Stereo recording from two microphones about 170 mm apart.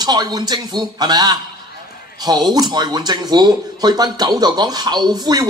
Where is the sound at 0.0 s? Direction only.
25° right (ahead or behind).